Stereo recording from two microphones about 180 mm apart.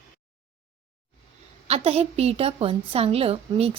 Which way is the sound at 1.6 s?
35° right (ahead or behind).